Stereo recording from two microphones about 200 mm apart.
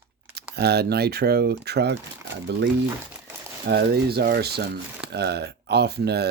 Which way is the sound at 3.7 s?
55° right (ahead or behind).